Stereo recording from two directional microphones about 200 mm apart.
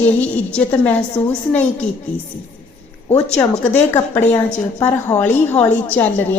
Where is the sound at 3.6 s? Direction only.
10° left (ahead or behind).